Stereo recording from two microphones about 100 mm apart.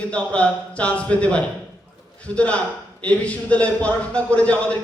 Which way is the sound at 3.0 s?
15° left (ahead or behind).